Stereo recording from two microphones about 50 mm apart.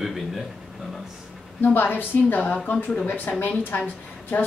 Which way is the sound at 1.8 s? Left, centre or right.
Left.